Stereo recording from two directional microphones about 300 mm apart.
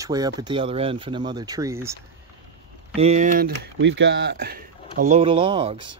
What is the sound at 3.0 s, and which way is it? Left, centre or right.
Speech, right.